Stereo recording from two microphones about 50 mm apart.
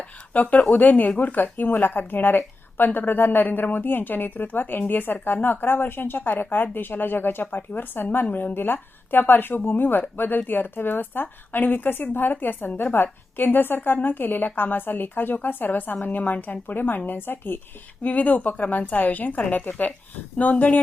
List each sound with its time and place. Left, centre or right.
0.3 s a woman's voice: left
18.0 s speech: left